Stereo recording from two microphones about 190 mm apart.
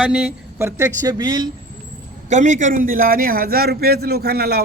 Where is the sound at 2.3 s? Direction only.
40° right (ahead or behind).